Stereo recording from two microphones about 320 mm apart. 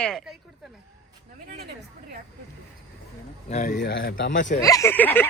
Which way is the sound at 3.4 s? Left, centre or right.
Left.